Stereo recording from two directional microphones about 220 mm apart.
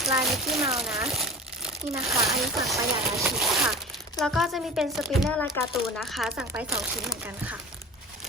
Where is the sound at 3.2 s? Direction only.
Centre (ahead or behind).